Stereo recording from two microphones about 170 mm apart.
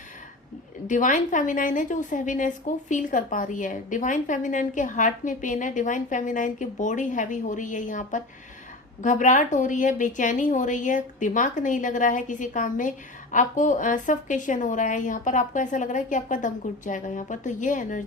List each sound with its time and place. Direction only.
0.9 s a woman's voice: 50° left (ahead or behind)